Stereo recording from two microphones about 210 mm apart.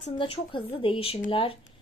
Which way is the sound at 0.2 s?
25° left (ahead or behind).